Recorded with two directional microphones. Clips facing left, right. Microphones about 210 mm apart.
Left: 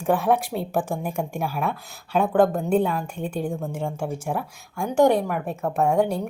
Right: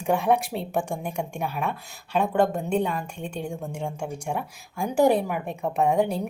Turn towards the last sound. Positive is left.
turn(degrees=0)  # may be behind; listen again after turning